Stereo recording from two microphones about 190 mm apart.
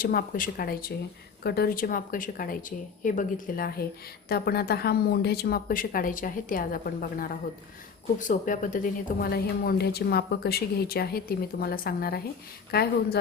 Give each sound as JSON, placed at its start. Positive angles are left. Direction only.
{"t": 0.0, "sound": "a woman's voice", "side_deg": 50}